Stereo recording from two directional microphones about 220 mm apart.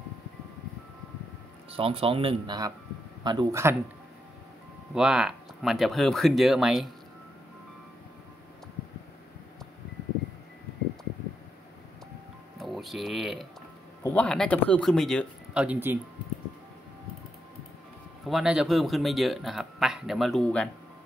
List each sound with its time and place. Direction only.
1.7 s a man's voice: 25° right (ahead or behind)
4.9 s speech: 5° right (ahead or behind)
12.5 s a sound: centre (ahead or behind)
14.0 s speech: 5° left (ahead or behind)
18.2 s speech: centre (ahead or behind)